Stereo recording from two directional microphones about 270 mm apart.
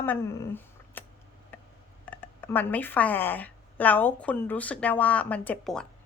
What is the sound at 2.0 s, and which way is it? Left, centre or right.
Speech, centre.